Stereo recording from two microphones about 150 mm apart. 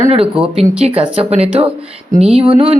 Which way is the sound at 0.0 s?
45° right (ahead or behind).